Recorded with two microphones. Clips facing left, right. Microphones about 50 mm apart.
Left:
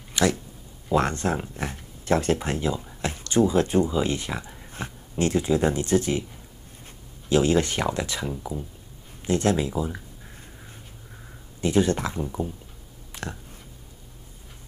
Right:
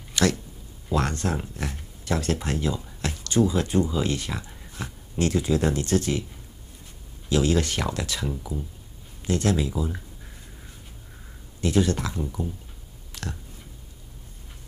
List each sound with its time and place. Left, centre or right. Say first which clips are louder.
0.1 s a sound: even; centre
0.9 s speech: left 3 dB; left
3.9 s speech: left 1 dB; left
4.8 s speech: left 1 dB; left
7.2 s speech: left 2 dB; left
9.2 s speech: left 2 dB; left
11.6 s speech: left 1 dB; left
13.1 s a sound: left 1 dB; left